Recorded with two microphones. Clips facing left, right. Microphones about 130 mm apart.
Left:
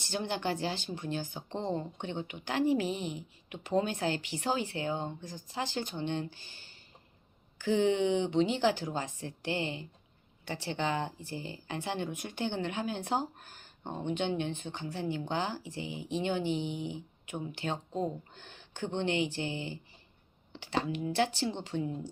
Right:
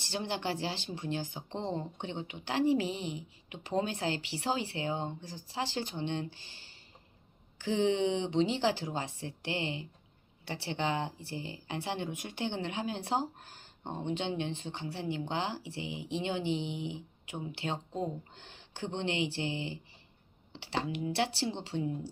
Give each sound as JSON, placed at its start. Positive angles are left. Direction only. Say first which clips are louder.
{"t": 0.0, "sound": "a woman's voice", "louder": "left 1 dB", "side_deg": -30}